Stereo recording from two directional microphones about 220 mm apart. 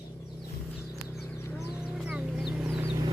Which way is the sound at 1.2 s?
10° left (ahead or behind).